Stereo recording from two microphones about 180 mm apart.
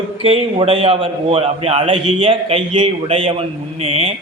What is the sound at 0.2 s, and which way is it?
A man's voice, 30° right (ahead or behind).